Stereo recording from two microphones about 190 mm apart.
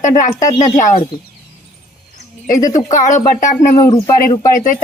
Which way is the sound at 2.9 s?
40° left (ahead or behind).